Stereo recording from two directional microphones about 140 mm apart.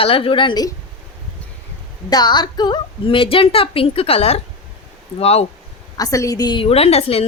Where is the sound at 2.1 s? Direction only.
30° left (ahead or behind); by 5.4 s 45° left (ahead or behind).